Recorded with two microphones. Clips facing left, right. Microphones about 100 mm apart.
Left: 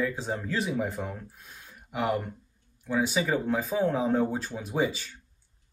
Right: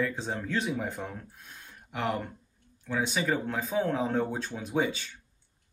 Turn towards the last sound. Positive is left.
turn(degrees=5)  # may be behind; listen again after turning